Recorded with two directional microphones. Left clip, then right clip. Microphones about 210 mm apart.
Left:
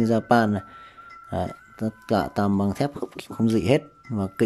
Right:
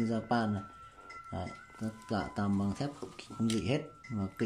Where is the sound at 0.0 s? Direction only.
40° left (ahead or behind).